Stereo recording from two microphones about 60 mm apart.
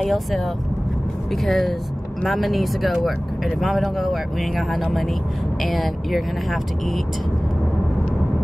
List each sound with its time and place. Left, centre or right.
0.0 s speech: centre